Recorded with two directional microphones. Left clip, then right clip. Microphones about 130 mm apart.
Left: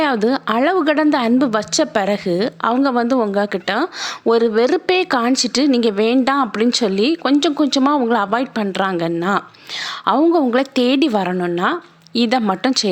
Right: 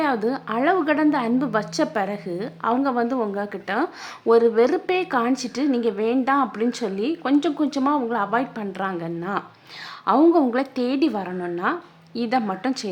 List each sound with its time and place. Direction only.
0.0 s speech: 35° left (ahead or behind)